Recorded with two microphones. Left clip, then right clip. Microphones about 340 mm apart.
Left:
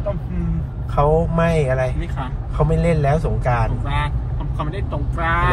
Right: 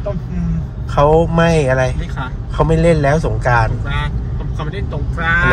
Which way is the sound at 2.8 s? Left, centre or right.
Right.